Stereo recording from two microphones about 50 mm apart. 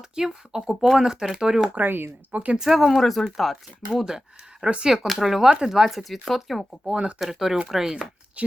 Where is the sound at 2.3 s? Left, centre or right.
Right.